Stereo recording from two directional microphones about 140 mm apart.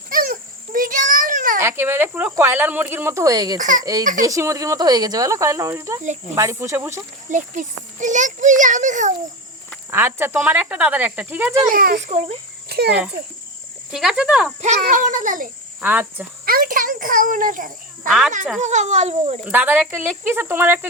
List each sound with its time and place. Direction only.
0.1 s a sound: 90° right; by 1.6 s 75° right (ahead or behind)
1.6 s speech: 15° right (ahead or behind)
3.6 s a child's voice: 70° right (ahead or behind)
4.2 s speech: 25° right (ahead or behind)
7.3 s a child's voice: 65° right (ahead or behind)
9.9 s speech: 15° right (ahead or behind)
11.7 s speech: 85° right
13.9 s cricket: 5° right (ahead or behind)
14.6 s a child's voice: 65° right (ahead or behind)
15.8 s speech: 10° right (ahead or behind)
16.5 s a child's voice: 90° right; by 18.1 s 70° right (ahead or behind)
18.6 s a child's voice: 55° right (ahead or behind)
19.5 s speech: 15° right (ahead or behind)